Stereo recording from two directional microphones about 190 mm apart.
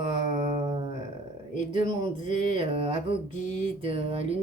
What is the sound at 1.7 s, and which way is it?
A woman's voice, 25° right (ahead or behind).